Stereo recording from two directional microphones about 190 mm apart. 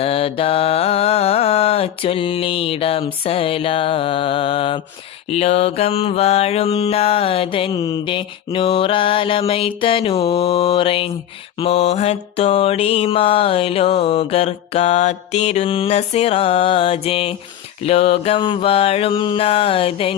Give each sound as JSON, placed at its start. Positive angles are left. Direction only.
{"t": 0.0, "sound": "mantra", "side_deg": 30}